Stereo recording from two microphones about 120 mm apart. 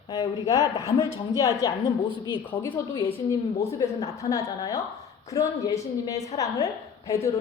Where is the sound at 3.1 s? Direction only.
25° left (ahead or behind).